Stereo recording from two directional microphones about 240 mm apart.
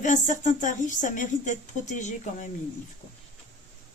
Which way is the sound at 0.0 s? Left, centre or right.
Left.